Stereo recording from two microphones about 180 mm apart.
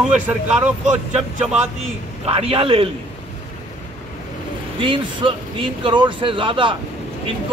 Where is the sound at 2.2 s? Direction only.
30° right (ahead or behind).